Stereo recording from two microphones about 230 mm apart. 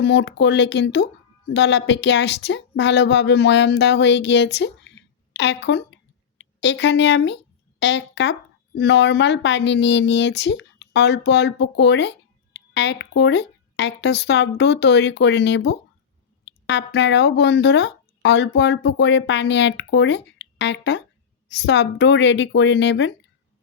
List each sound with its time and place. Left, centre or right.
0.0 s speech: left